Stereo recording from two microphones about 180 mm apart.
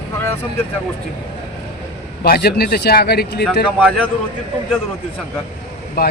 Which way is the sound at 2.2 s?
60° left (ahead or behind).